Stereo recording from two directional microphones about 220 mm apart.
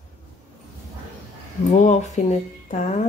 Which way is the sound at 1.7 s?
30° left (ahead or behind).